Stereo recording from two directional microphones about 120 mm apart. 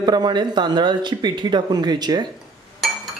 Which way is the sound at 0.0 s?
35° right (ahead or behind).